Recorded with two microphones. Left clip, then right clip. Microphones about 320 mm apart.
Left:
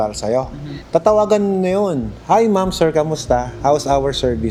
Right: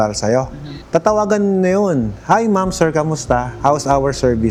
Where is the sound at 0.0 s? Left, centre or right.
Right.